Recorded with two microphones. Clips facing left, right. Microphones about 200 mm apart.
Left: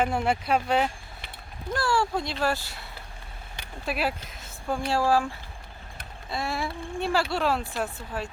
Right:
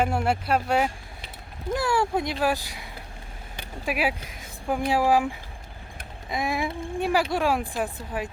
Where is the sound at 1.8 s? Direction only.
20° right (ahead or behind).